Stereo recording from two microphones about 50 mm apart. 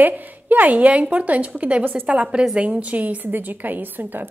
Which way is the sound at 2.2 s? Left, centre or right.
Centre.